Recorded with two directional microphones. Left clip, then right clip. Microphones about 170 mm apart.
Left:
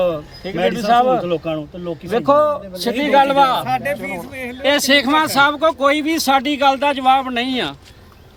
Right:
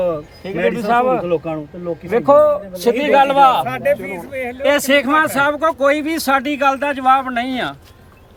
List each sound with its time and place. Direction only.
0.5 s speech: 10° right (ahead or behind)
1.2 s speech: centre (ahead or behind)
2.1 s a man's voice: 20° right (ahead or behind)
3.6 s speech: 25° left (ahead or behind)
4.6 s speech: 15° right (ahead or behind); by 7.7 s centre (ahead or behind)